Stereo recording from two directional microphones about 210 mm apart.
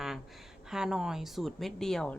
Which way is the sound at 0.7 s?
5° right (ahead or behind).